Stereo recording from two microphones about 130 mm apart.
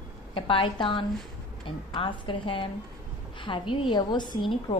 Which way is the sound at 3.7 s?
40° left (ahead or behind).